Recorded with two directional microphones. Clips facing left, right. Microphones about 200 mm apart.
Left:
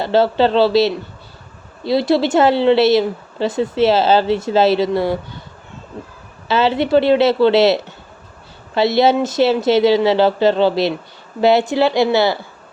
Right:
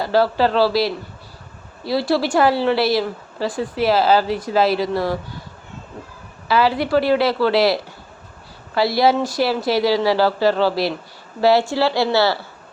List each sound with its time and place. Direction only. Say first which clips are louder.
0.0 s a woman's voice: left 3 dB; 25° left (ahead or behind)
6.5 s a woman's voice: left 3 dB; 25° left (ahead or behind)